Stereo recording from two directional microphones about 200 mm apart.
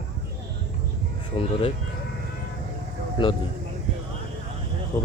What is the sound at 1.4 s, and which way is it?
Speech, 30° left (ahead or behind).